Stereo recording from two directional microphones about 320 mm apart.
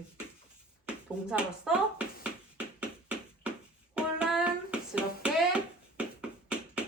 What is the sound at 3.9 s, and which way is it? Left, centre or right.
Hands, centre.